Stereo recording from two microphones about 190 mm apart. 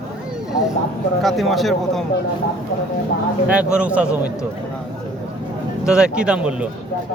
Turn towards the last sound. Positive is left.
turn(degrees=-5)  # may be behind; listen again after turning